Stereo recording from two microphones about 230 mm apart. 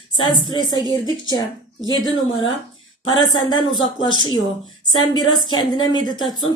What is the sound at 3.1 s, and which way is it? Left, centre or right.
A woman's voice, centre.